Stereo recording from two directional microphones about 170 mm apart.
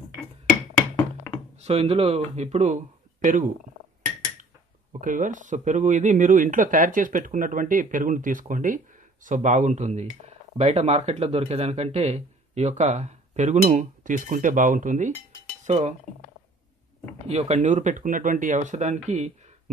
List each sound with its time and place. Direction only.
1.3 s a sound: 10° left (ahead or behind)
1.6 s speech: 35° right (ahead or behind)
5.0 s speech: 50° right (ahead or behind)
15.6 s cutlery: 45° right (ahead or behind)
17.3 s speech: 40° right (ahead or behind)